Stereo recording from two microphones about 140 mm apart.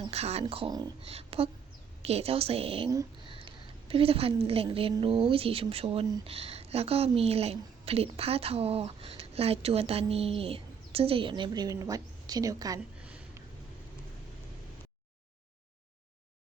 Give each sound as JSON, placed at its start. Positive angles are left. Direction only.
{"t": 0.1, "sound": "a woman's voice", "side_deg": -50}